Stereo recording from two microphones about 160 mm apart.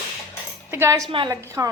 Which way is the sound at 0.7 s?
15° right (ahead or behind).